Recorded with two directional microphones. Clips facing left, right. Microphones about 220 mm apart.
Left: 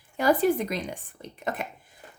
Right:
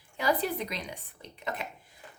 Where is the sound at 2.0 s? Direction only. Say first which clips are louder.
Left 2 dB; 40° left (ahead or behind).